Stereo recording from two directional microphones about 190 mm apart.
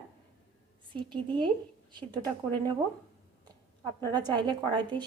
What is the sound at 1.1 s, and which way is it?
A woman's voice, 25° right (ahead or behind).